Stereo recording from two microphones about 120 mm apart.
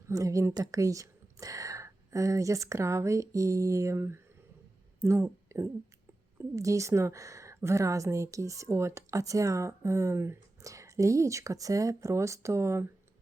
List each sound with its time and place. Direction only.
0.1 s a woman's voice: 25° right (ahead or behind)